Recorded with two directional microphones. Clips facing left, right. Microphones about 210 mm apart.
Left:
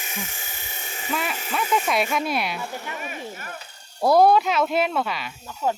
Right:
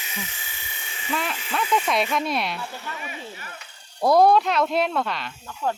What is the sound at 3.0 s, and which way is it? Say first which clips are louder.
Vehicle: left 3 dB; 45° left (ahead or behind).